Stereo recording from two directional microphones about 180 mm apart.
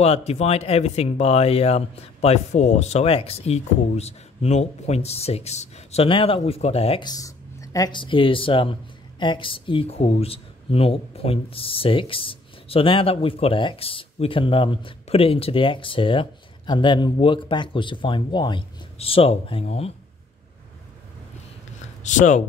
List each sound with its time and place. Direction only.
0.0 s speech: 35° left (ahead or behind)
22.0 s speech: 45° left (ahead or behind)